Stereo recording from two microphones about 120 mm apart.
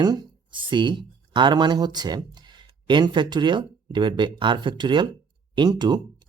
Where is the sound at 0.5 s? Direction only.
45° right (ahead or behind).